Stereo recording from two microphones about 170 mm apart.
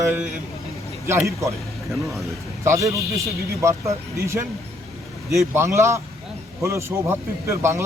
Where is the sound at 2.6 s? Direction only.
15° right (ahead or behind).